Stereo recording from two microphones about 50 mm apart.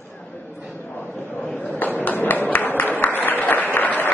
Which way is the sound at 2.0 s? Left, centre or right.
Left.